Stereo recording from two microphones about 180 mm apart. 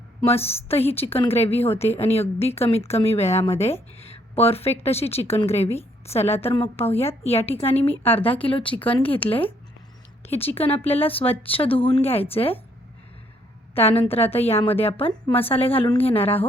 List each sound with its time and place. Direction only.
0.3 s a woman's voice: 35° left (ahead or behind)
13.7 s a woman's voice: 35° left (ahead or behind)